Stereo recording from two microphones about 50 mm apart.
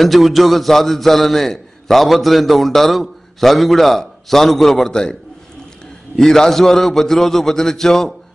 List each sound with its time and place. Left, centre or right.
0.0 s a man's voice: centre
6.1 s a man's voice: centre